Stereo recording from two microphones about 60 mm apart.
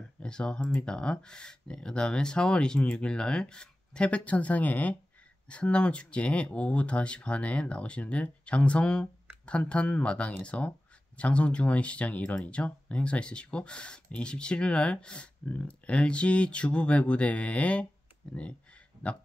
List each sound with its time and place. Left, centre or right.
0.2 s speech: centre